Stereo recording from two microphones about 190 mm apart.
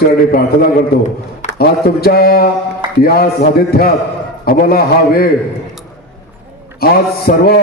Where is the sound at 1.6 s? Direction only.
55° left (ahead or behind).